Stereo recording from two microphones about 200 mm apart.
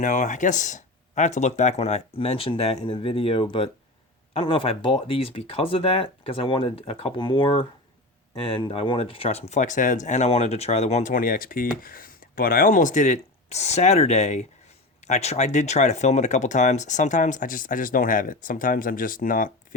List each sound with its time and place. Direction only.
0.0 s speech: 40° left (ahead or behind)